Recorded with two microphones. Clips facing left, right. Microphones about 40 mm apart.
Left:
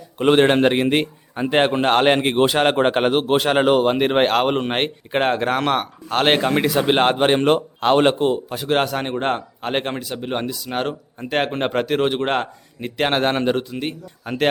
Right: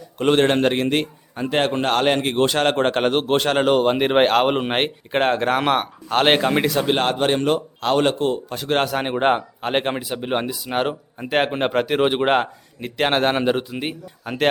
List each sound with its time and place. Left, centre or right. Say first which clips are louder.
0.2 s a man's voice: left 2 dB; centre
6.7 s a man's voice: left 2 dB; centre
6.9 s a man's voice: left 6 dB; left
8.4 s a man's voice: left 1 dB; centre
9.0 s a man's voice: right 3 dB; centre
12.8 s a man's voice: even; centre